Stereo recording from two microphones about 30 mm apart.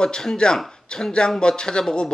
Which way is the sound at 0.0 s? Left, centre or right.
Left.